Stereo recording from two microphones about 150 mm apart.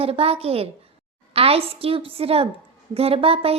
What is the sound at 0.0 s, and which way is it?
A woman's voice, 40° right (ahead or behind).